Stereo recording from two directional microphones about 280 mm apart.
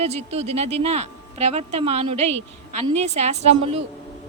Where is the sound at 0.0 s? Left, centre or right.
Right.